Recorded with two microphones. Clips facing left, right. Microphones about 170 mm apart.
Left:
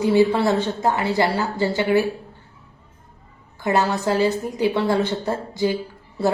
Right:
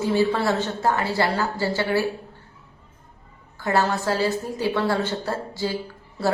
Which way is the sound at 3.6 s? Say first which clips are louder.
Left 2 dB; 20° left (ahead or behind).